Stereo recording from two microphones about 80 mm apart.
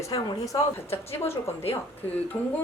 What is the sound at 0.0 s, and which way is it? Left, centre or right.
A woman's voice, left.